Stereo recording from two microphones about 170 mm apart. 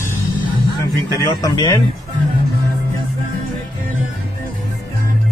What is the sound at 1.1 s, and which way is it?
Speech, 25° left (ahead or behind).